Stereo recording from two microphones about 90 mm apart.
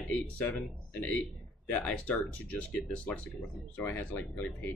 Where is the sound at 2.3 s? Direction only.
15° left (ahead or behind).